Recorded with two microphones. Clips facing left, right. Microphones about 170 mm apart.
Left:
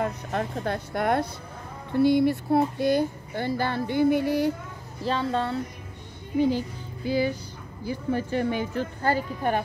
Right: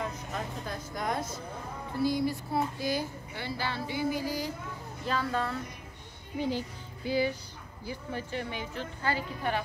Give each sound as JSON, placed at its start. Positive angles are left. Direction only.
{"t": 0.0, "sound": "speech", "side_deg": 60}
{"t": 5.0, "sound": "speech", "side_deg": 25}
{"t": 7.1, "sound": "speech", "side_deg": 45}